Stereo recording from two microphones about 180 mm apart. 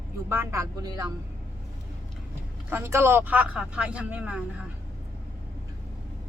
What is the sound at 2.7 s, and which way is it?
A man's voice, 15° right (ahead or behind).